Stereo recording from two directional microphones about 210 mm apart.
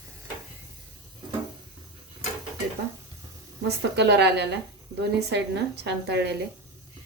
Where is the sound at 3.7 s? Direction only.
55° right (ahead or behind).